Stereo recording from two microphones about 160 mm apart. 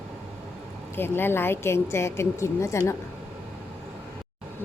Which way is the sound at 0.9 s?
15° left (ahead or behind).